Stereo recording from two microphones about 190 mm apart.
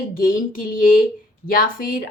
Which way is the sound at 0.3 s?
45° left (ahead or behind).